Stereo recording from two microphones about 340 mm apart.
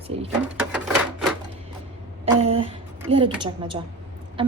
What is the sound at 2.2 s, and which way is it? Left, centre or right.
A woman's voice, centre.